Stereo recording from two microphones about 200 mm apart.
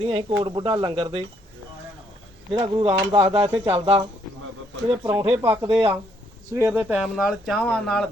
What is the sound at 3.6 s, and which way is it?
Speech, 30° right (ahead or behind).